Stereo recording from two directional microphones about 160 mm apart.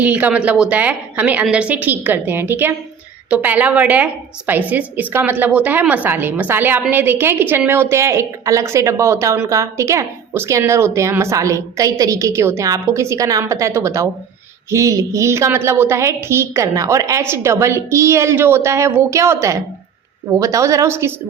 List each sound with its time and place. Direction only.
0.0 s a woman's voice: 10° right (ahead or behind)